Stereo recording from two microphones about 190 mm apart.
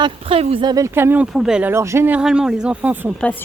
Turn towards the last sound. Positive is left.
turn(degrees=-10)  # may be behind; listen again after turning